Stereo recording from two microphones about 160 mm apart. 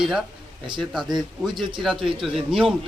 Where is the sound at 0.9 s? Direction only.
Centre (ahead or behind).